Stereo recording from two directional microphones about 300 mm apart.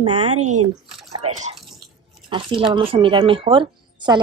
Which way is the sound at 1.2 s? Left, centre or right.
Right.